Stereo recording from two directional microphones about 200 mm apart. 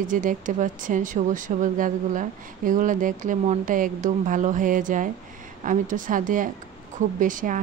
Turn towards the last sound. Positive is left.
turn(degrees=-40)  # may be behind; listen again after turning